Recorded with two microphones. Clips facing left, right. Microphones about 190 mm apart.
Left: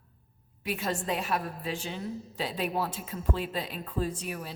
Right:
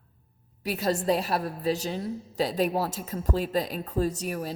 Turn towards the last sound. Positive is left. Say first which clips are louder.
# right 5 dB
turn(degrees=-40)  # may be behind; listen again after turning